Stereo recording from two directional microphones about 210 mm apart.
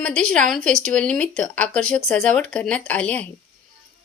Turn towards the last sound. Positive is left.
turn(degrees=5)  # may be behind; listen again after turning